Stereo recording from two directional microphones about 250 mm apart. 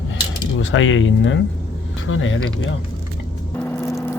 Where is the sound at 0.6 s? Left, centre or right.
Left.